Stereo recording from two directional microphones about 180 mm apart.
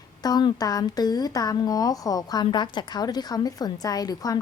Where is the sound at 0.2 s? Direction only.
20° left (ahead or behind).